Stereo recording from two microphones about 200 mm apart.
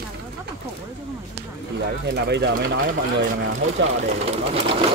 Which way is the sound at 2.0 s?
55° right (ahead or behind).